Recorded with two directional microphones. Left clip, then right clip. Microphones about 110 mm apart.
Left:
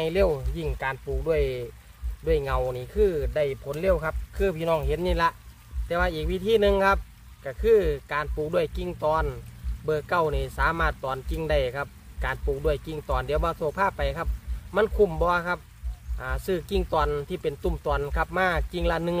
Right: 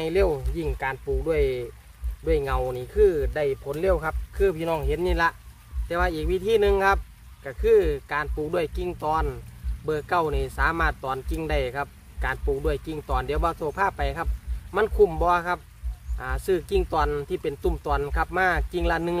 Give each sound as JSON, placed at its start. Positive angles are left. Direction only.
{"t": 0.0, "sound": "speech", "side_deg": -15}